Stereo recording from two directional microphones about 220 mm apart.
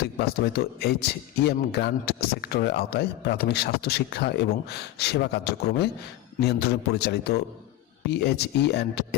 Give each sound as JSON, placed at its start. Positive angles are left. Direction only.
{"t": 0.0, "sound": "speech", "side_deg": 45}